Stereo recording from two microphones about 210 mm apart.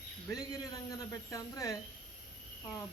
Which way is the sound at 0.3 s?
15° left (ahead or behind).